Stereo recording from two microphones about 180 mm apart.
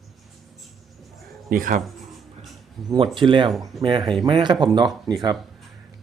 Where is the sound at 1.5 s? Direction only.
50° right (ahead or behind).